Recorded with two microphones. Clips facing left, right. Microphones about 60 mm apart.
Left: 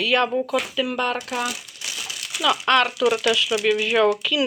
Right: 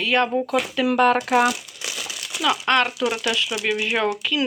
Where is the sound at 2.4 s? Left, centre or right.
Right.